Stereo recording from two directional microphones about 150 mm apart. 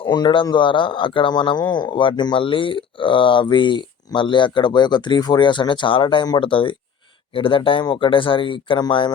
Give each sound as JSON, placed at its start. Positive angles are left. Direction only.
{"t": 0.0, "sound": "speech", "side_deg": 30}